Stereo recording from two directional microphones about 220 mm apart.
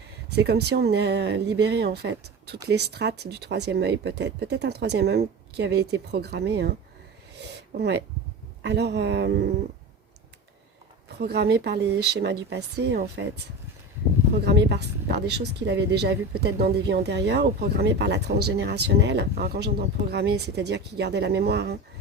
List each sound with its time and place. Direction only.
0.3 s speech: 50° right (ahead or behind)
7.8 s speech: 50° right (ahead or behind)
11.2 s speech: 45° right (ahead or behind)
14.4 s speech: 50° right (ahead or behind)